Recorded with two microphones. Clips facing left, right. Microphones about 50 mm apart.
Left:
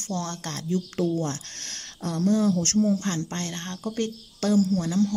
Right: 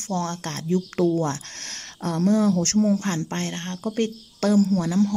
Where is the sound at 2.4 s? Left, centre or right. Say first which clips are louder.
Right 2 dB; right.